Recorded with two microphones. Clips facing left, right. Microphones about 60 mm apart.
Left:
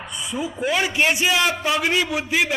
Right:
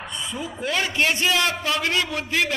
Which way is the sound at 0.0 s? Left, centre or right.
Centre.